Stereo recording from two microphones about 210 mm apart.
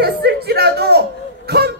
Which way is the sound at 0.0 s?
50° right (ahead or behind).